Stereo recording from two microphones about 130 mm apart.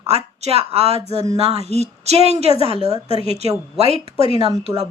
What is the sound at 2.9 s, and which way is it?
Speech, 45° left (ahead or behind).